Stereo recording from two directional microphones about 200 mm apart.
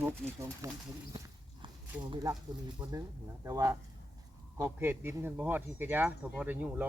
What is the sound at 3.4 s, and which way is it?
Speech, 15° right (ahead or behind).